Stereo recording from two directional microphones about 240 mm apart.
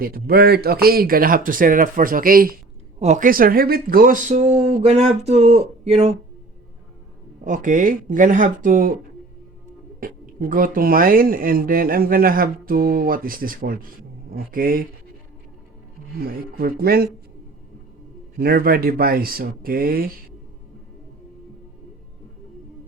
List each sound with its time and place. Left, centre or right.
0.0 s speech: right
7.4 s speech: right
10.0 s speech: right
16.1 s speech: right
18.3 s speech: right